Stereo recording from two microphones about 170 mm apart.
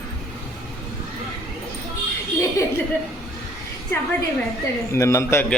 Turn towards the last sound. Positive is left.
turn(degrees=15)  # may be behind; listen again after turning